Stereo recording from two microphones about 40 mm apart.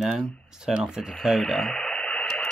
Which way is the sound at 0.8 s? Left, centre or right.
Centre.